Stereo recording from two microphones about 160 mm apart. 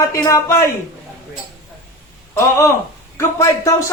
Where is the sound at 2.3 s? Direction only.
20° left (ahead or behind).